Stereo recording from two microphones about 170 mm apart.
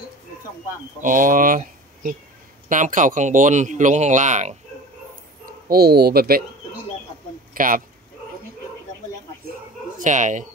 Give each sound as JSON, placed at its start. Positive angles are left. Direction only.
{"t": 1.0, "sound": "speech", "side_deg": -50}
{"t": 5.7, "sound": "speech", "side_deg": -65}
{"t": 7.5, "sound": "speech", "side_deg": -55}
{"t": 9.9, "sound": "speech", "side_deg": -50}